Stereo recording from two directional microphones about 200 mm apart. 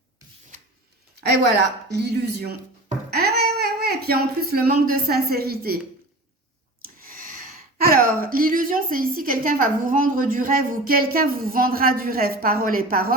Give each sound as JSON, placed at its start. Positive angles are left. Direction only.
{"t": 1.2, "sound": "a woman's voice", "side_deg": -55}
{"t": 6.8, "sound": "a sound", "side_deg": -45}
{"t": 8.0, "sound": "a woman's voice", "side_deg": -45}